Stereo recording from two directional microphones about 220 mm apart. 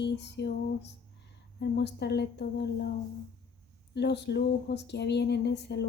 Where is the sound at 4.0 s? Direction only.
50° left (ahead or behind).